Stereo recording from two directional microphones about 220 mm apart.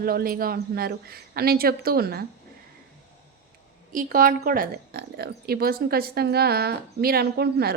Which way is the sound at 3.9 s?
40° right (ahead or behind).